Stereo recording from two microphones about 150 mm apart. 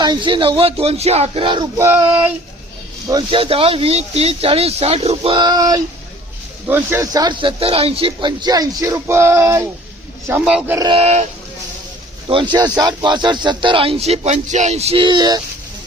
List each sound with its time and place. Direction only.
0.0 s speech: 30° right (ahead or behind)
1.8 s a sound: 15° right (ahead or behind)
3.2 s speech: 40° right (ahead or behind)
6.7 s speech: 15° right (ahead or behind)
10.4 s a sound: 10° right (ahead or behind)
10.9 s speech: 45° right (ahead or behind)
12.3 s speech: 30° right (ahead or behind)